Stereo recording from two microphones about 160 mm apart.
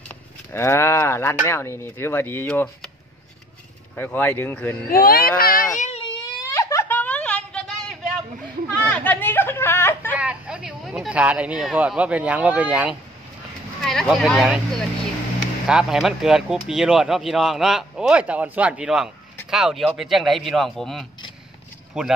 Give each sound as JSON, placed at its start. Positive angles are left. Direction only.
{"t": 0.5, "sound": "speech", "side_deg": 15}
{"t": 3.9, "sound": "speech", "side_deg": 10}
{"t": 4.9, "sound": "speech", "side_deg": 65}
{"t": 6.0, "sound": "wail", "side_deg": 20}
{"t": 8.9, "sound": "a sound", "side_deg": 10}
{"t": 10.1, "sound": "speech", "side_deg": -5}